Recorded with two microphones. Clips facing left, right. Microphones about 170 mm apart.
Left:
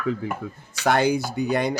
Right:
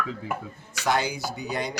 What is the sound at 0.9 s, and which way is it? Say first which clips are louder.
Speech: left 6 dB; 55° left (ahead or behind).